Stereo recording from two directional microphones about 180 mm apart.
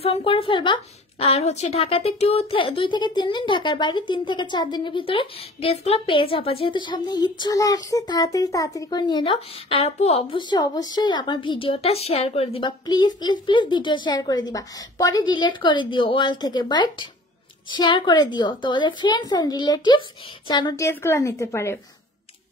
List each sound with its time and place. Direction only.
0.0 s a woman's voice: 30° left (ahead or behind); by 21.7 s 15° left (ahead or behind)